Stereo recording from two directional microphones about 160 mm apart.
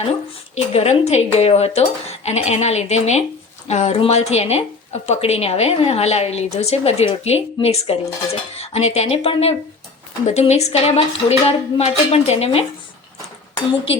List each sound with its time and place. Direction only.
0.5 s a woman's voice: 40° left (ahead or behind)